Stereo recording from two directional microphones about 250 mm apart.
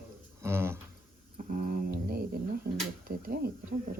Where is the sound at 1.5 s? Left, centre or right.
Right.